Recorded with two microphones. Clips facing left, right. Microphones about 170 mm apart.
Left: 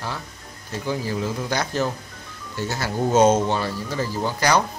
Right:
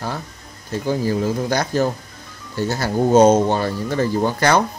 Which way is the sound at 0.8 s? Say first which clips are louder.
Right 6 dB; 45° right (ahead or behind).